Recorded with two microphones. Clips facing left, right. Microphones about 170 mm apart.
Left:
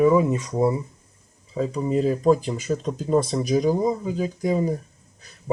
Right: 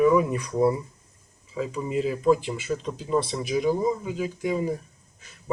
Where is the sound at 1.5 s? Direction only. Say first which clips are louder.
Left 5 dB; 35° left (ahead or behind).